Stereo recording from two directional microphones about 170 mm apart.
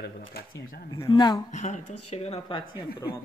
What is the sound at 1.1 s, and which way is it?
Speech, 25° left (ahead or behind).